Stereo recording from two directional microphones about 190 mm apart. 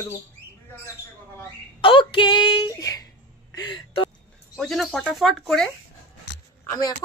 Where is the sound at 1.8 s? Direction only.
25° left (ahead or behind).